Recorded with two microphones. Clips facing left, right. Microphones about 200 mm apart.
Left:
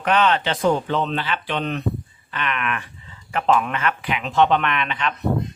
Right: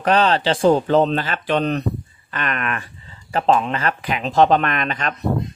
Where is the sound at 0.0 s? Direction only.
35° right (ahead or behind).